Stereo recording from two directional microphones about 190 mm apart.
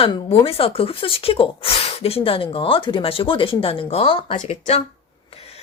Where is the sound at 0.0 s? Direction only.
30° left (ahead or behind).